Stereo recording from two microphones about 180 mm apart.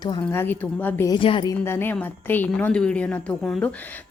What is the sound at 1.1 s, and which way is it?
Speech, 30° left (ahead or behind).